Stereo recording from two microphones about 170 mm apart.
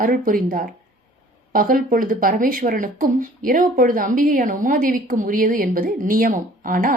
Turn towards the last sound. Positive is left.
turn(degrees=-55)  # may be behind; listen again after turning